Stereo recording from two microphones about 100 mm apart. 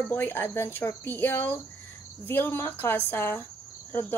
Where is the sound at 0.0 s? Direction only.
20° left (ahead or behind).